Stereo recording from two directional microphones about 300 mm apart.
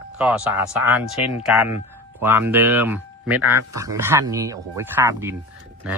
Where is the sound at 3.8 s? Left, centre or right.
Centre.